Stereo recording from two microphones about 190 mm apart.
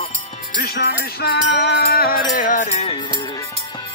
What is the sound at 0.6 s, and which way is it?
Music, 60° left (ahead or behind).